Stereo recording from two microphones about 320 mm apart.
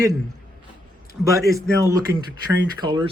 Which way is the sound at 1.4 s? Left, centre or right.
Centre.